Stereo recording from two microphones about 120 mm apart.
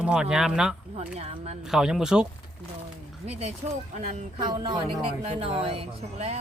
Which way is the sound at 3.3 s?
60° right (ahead or behind).